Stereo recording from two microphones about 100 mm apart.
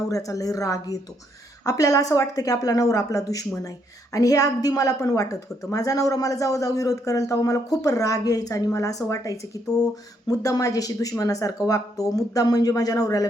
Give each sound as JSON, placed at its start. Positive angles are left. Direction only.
{"t": 0.1, "sound": "a woman's voice", "side_deg": 35}